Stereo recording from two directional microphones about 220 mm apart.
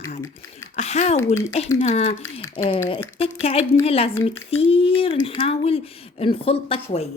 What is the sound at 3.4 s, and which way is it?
A woman's voice, 25° left (ahead or behind).